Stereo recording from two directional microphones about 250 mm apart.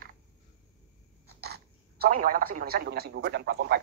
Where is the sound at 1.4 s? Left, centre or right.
Right.